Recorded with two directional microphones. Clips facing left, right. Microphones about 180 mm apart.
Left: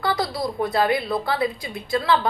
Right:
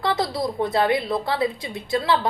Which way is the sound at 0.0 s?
25° right (ahead or behind).